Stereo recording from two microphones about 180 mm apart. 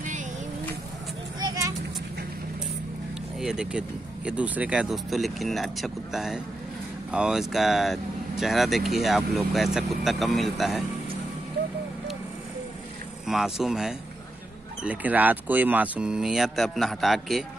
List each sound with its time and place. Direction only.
1.4 s vehicle: 20° right (ahead or behind)
3.3 s speech: 5° right (ahead or behind)
13.3 s speech: centre (ahead or behind)